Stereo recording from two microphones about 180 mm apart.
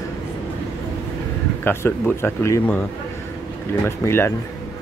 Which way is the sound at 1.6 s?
10° left (ahead or behind).